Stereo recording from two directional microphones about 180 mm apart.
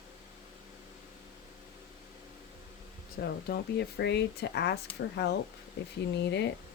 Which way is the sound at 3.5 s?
70° left (ahead or behind).